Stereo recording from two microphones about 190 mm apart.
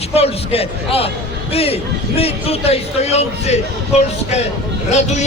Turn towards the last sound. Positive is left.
turn(degrees=35)  # may be behind; listen again after turning